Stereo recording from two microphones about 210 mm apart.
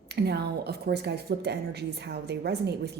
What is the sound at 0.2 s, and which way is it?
A woman's voice, 50° right (ahead or behind).